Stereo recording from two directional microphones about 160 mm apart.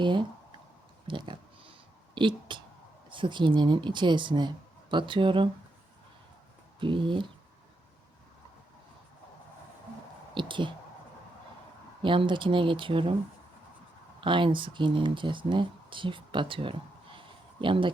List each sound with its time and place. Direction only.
0.0 s speech: 30° right (ahead or behind)
1.0 s a sound: 30° right (ahead or behind)
2.1 s speech: 30° right (ahead or behind)
6.7 s speech: 30° right (ahead or behind)
10.3 s speech: 30° right (ahead or behind)
12.0 s speech: 30° right (ahead or behind)
14.2 s speech: 30° right (ahead or behind)